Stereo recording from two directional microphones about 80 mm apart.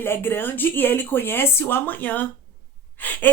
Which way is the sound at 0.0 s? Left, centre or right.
Left.